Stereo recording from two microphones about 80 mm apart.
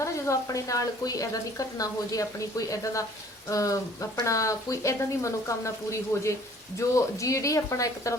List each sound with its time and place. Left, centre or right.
0.0 s speech: left